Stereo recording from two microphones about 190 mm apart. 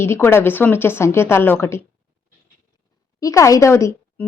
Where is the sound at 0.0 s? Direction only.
15° left (ahead or behind).